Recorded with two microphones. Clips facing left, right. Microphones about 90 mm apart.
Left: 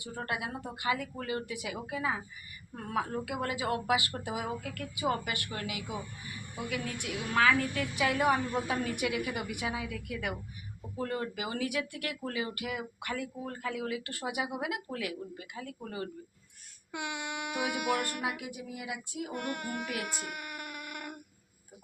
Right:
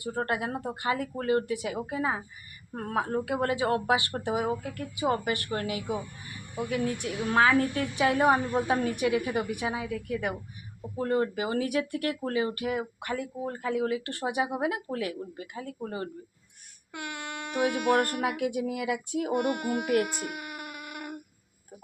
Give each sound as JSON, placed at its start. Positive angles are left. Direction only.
{"t": 0.0, "sound": "speech", "side_deg": -40}
{"t": 2.7, "sound": "speech", "side_deg": -45}
{"t": 16.9, "sound": "speech", "side_deg": 15}
{"t": 17.9, "sound": "a sound", "side_deg": -50}
{"t": 19.3, "sound": "child singing", "side_deg": -15}
{"t": 19.8, "sound": "speech", "side_deg": -50}
{"t": 20.1, "sound": "baby cry", "side_deg": -5}